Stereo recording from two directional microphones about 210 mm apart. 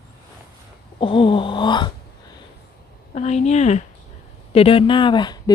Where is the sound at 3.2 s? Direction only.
30° left (ahead or behind).